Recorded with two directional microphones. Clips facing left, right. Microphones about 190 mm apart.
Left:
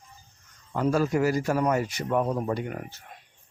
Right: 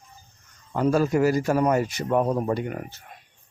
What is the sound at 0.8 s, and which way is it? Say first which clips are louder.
Speech: right 3 dB; 30° right (ahead or behind).